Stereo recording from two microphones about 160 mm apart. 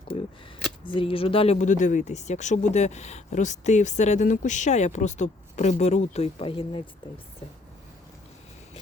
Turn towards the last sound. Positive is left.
turn(degrees=35)  # may be behind; listen again after turning